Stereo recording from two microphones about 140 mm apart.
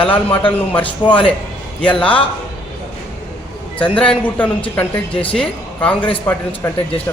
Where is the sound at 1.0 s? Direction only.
35° left (ahead or behind).